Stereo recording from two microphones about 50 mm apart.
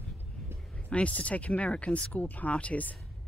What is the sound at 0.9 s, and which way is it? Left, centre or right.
Speech, left.